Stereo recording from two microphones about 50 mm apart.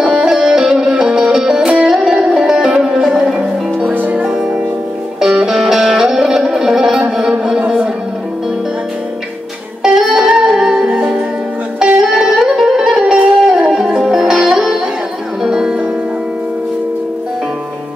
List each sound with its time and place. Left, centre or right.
0.0 s music: centre
3.9 s music: right
4.2 s music: centre
9.9 s music: centre